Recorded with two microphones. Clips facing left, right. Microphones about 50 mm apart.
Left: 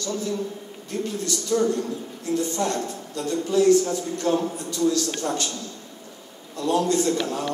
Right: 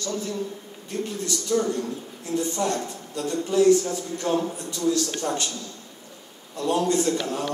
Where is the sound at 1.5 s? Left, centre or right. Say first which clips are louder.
Left 2 dB; centre.